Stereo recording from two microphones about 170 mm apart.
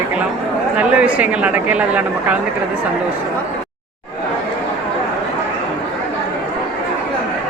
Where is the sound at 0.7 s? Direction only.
10° right (ahead or behind).